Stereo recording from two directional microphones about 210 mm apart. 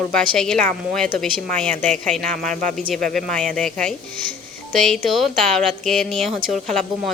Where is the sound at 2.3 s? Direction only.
40° right (ahead or behind).